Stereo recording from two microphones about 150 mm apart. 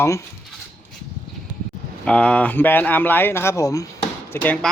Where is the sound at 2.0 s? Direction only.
10° left (ahead or behind).